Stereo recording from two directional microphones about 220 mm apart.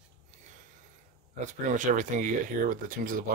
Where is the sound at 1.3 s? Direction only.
35° right (ahead or behind).